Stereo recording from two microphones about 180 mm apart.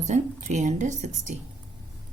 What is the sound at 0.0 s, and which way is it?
Speech, 45° right (ahead or behind).